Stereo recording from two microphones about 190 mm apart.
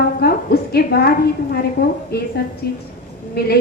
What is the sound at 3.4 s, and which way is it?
Speech, 55° left (ahead or behind).